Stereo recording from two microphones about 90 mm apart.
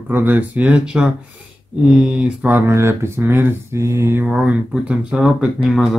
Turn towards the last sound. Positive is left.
turn(degrees=-5)  # may be behind; listen again after turning